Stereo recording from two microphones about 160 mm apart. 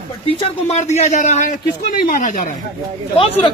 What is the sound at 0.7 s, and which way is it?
A man's voice, 45° left (ahead or behind).